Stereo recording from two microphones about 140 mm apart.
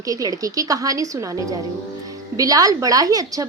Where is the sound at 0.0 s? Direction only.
25° right (ahead or behind).